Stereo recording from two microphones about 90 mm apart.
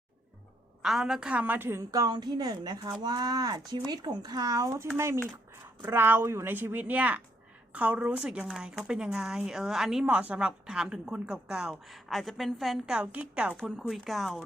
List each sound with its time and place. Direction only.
0.8 s a woman's voice: 5° right (ahead or behind); by 1.8 s 25° right (ahead or behind)
1.9 s a woman's voice: 40° right (ahead or behind); by 13.6 s 15° right (ahead or behind)
13.6 s speech: centre (ahead or behind)